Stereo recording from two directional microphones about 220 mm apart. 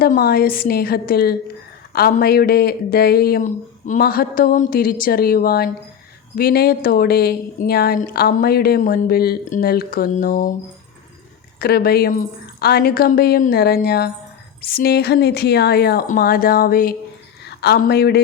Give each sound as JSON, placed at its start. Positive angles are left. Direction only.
{"t": 0.0, "sound": "speech", "side_deg": 45}
{"t": 11.6, "sound": "speech", "side_deg": 45}